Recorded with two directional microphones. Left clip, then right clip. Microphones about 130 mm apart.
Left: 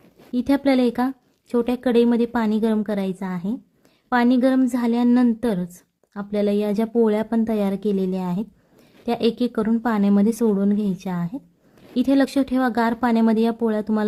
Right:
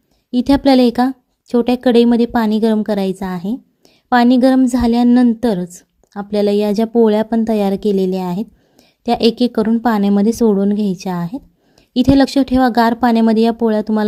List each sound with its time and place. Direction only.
0.3 s a woman's voice: 40° right (ahead or behind)